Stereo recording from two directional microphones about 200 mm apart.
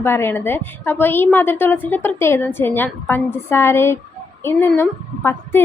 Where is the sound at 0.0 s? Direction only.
10° left (ahead or behind).